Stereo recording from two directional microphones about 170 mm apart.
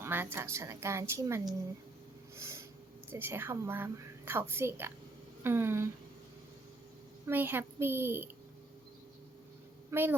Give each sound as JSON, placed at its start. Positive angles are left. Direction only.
{"t": 0.0, "sound": "a woman's voice", "side_deg": -10}
{"t": 2.3, "sound": "snort", "side_deg": -15}
{"t": 3.1, "sound": "a woman's voice", "side_deg": -15}
{"t": 7.3, "sound": "a woman's voice", "side_deg": -10}
{"t": 9.9, "sound": "a woman's voice", "side_deg": -10}